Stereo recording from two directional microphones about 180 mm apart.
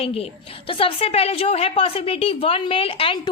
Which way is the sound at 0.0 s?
30° left (ahead or behind).